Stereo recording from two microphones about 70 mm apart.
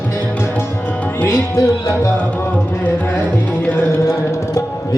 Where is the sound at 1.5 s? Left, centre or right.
Left.